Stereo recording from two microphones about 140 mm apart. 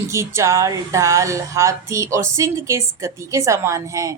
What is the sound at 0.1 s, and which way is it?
Speech, 20° right (ahead or behind).